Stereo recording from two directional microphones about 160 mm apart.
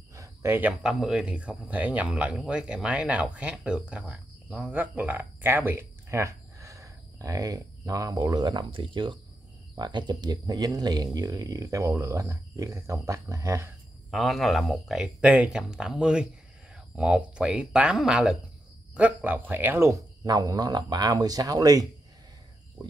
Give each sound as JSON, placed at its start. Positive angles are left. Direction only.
{"t": 0.1, "sound": "speech", "side_deg": -20}
{"t": 14.1, "sound": "speech", "side_deg": 0}